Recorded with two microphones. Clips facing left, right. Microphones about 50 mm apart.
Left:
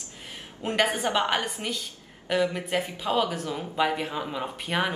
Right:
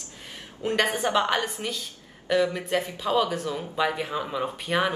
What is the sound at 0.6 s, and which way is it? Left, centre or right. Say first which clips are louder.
Speech: right 3 dB; left.